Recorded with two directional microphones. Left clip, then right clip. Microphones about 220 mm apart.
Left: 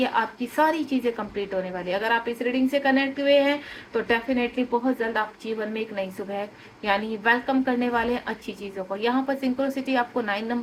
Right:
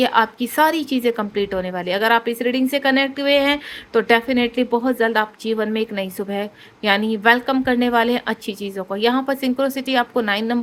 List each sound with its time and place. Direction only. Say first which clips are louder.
0.0 s a woman's voice: right 7 dB; 50° right (ahead or behind)